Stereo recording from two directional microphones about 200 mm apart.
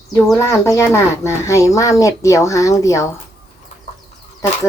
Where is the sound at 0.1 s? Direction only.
15° left (ahead or behind).